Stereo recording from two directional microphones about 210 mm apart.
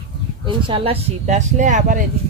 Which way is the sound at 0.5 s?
25° right (ahead or behind).